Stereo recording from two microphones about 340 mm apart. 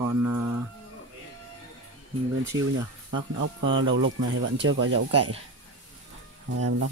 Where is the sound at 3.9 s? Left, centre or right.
Right.